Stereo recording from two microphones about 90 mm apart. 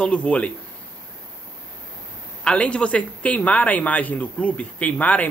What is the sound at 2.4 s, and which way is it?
Speech, 10° left (ahead or behind).